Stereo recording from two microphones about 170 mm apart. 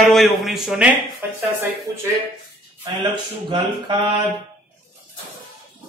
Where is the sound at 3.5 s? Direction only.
25° right (ahead or behind).